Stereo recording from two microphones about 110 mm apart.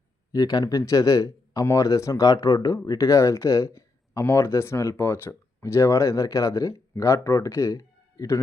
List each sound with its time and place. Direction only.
0.3 s speech: 35° left (ahead or behind)